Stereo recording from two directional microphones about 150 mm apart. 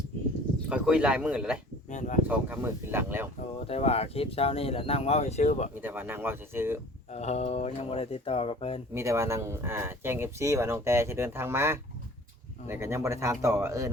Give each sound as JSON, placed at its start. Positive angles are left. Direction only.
{"t": 0.7, "sound": "speech", "side_deg": -5}
{"t": 1.9, "sound": "speech", "side_deg": 55}
{"t": 2.2, "sound": "speech", "side_deg": -10}
{"t": 3.7, "sound": "speech", "side_deg": 40}
{"t": 5.8, "sound": "speech", "side_deg": -15}
{"t": 7.1, "sound": "speech", "side_deg": 45}
{"t": 9.0, "sound": "speech", "side_deg": -20}